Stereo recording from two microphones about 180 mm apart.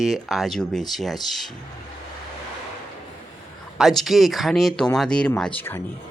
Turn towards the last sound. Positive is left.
turn(degrees=10)  # may be behind; listen again after turning